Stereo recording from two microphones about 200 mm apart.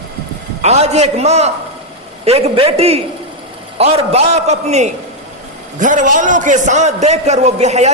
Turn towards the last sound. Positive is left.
turn(degrees=-35)  # may be behind; listen again after turning